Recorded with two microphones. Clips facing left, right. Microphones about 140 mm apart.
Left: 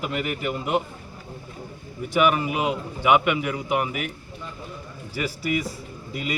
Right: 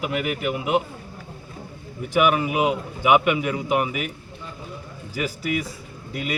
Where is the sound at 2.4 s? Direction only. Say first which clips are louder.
Right 3 dB; 10° right (ahead or behind).